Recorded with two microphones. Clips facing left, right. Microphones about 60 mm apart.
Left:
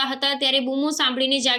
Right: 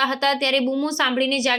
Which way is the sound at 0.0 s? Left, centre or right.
Right.